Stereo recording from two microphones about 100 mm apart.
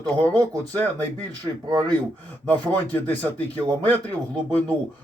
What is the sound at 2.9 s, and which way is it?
Speech, 20° left (ahead or behind).